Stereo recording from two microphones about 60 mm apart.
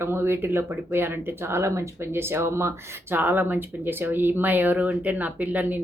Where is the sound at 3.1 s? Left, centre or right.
Right.